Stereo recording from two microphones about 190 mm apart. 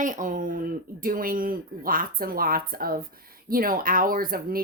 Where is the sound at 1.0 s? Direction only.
45° right (ahead or behind).